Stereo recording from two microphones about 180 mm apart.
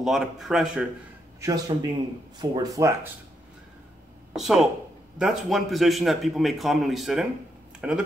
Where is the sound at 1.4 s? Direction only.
20° right (ahead or behind).